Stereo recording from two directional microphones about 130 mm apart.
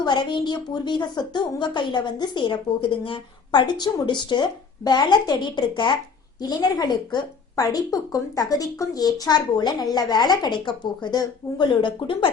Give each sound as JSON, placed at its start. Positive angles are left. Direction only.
{"t": 0.0, "sound": "a woman's voice", "side_deg": 35}